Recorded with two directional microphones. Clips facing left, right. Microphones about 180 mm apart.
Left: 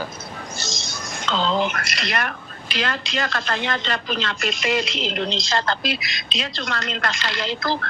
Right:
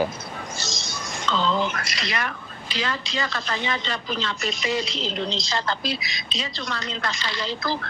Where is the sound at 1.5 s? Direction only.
70° left (ahead or behind).